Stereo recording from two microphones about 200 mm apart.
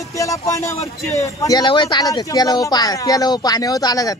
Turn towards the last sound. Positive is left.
turn(degrees=20)  # may be behind; listen again after turning